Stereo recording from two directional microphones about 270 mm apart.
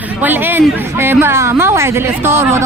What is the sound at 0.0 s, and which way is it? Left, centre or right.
A woman's voice, centre.